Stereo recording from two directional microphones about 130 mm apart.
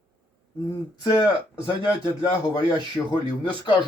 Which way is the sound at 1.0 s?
35° left (ahead or behind).